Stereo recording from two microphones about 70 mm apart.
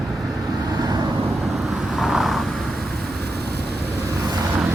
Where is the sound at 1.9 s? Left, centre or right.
Centre.